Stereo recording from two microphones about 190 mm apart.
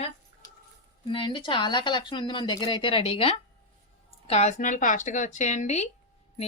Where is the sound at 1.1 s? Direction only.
25° left (ahead or behind).